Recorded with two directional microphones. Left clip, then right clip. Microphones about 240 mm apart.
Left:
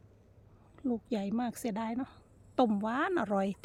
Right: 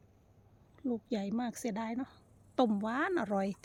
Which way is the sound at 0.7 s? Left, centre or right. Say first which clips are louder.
Left 2 dB; centre.